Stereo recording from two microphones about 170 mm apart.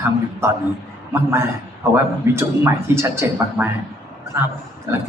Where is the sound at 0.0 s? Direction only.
15° right (ahead or behind).